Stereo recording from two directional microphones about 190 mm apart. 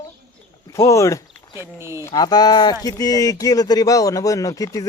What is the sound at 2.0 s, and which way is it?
Speech, 20° left (ahead or behind).